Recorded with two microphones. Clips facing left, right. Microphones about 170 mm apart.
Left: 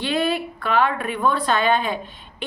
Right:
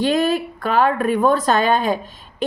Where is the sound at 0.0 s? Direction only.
45° right (ahead or behind).